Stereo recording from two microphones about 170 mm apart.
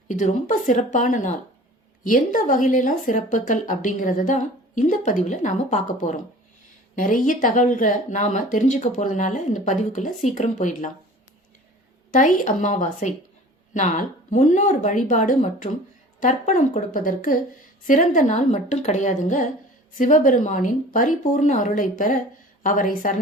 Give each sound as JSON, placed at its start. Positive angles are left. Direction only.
{"t": 0.1, "sound": "a woman's voice", "side_deg": 45}
{"t": 12.1, "sound": "a woman's voice", "side_deg": 50}